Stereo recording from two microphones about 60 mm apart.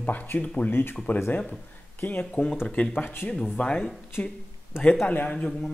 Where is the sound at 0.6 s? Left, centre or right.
Left.